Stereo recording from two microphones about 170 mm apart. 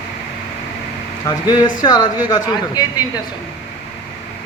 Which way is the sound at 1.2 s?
25° left (ahead or behind).